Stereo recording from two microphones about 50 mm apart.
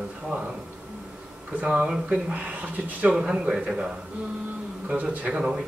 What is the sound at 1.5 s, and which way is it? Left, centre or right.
A man's voice, right.